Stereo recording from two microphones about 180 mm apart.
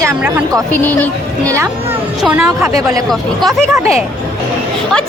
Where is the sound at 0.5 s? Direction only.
10° left (ahead or behind).